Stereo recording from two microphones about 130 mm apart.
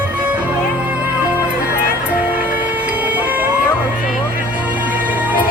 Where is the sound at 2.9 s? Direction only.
15° right (ahead or behind).